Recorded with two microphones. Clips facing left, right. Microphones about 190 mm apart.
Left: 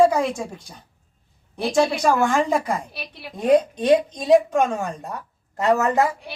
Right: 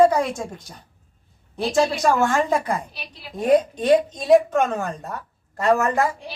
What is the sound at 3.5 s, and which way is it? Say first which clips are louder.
Speech: even; 15° left (ahead or behind).